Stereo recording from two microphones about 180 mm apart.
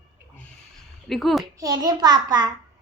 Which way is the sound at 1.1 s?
Centre (ahead or behind).